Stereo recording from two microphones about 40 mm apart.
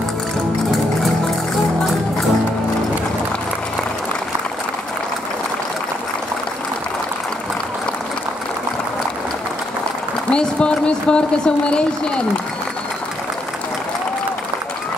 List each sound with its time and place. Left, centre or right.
10.3 s speech: left